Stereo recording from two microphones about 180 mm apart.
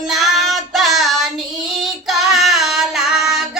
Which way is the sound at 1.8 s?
Centre (ahead or behind).